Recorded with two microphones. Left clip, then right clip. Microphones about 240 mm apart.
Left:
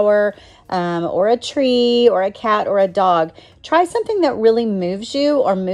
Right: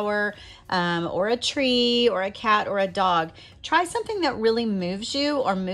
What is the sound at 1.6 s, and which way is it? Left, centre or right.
A woman's voice, right.